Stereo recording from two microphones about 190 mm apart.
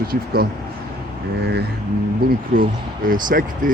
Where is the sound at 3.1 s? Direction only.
45° right (ahead or behind).